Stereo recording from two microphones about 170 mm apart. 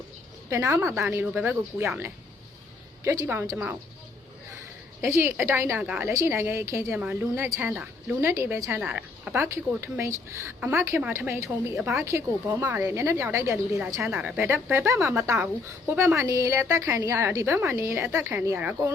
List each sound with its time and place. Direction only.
0.5 s speech: 15° right (ahead or behind)
3.0 s speech: 15° right (ahead or behind)
4.9 s speech: 15° right (ahead or behind)